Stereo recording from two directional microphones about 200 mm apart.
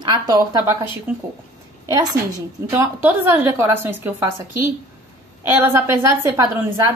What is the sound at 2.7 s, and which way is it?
A woman's voice, 10° right (ahead or behind).